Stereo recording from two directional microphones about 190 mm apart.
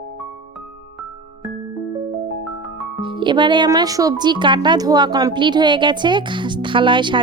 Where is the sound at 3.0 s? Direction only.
25° right (ahead or behind).